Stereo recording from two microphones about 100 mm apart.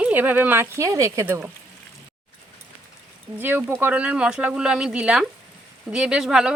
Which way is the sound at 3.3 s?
20° right (ahead or behind).